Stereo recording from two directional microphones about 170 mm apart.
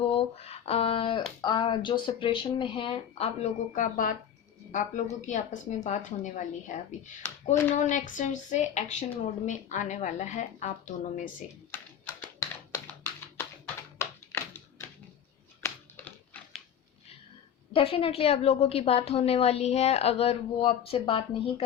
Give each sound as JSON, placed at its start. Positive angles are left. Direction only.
{"t": 0.0, "sound": "speech", "side_deg": 35}
{"t": 3.8, "sound": "a woman's voice", "side_deg": 55}
{"t": 12.0, "sound": "typing", "side_deg": 20}
{"t": 14.0, "sound": "typewriter", "side_deg": 15}
{"t": 15.6, "sound": "typing", "side_deg": 10}
{"t": 17.7, "sound": "a woman's voice", "side_deg": 35}